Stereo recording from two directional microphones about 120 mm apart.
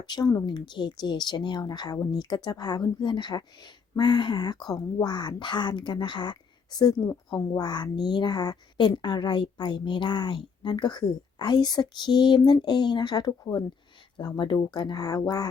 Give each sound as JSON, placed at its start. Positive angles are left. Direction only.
{"t": 0.0, "sound": "a woman's voice", "side_deg": 35}